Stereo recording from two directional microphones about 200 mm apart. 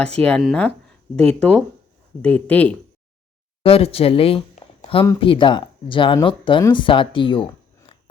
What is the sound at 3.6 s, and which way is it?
Speech, 30° left (ahead or behind).